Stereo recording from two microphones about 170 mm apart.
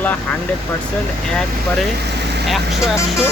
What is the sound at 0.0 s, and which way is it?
Speech, 10° left (ahead or behind).